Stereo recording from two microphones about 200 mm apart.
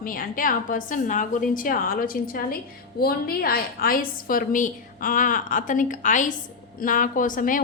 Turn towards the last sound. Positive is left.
turn(degrees=40)  # may be behind; listen again after turning